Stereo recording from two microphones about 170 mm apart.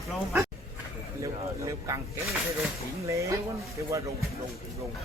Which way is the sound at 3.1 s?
15° right (ahead or behind).